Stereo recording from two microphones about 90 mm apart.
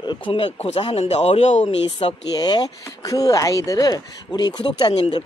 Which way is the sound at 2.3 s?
50° left (ahead or behind).